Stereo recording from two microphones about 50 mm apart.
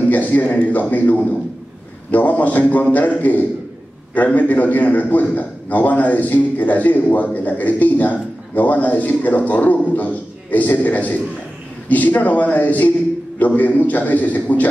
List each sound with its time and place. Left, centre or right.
0.1 s a man's voice: left